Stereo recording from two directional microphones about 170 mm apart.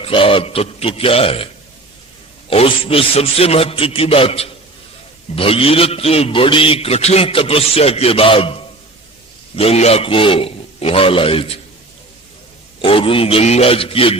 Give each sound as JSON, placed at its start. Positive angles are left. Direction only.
{"t": 0.0, "sound": "a man's voice", "side_deg": 30}
{"t": 2.5, "sound": "a man's voice", "side_deg": 35}
{"t": 12.8, "sound": "a man's voice", "side_deg": 30}